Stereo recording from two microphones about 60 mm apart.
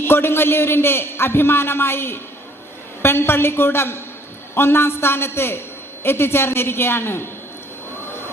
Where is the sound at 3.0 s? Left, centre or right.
Left.